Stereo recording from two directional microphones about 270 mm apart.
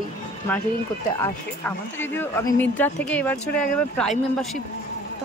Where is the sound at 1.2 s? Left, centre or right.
Centre.